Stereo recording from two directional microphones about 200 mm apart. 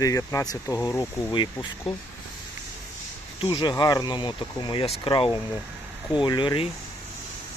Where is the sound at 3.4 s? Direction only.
20° left (ahead or behind).